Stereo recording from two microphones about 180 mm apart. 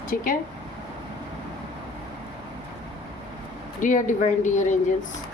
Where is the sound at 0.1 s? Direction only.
50° left (ahead or behind).